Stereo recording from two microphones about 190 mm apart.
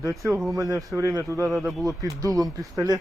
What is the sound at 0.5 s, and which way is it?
Speech, 15° right (ahead or behind).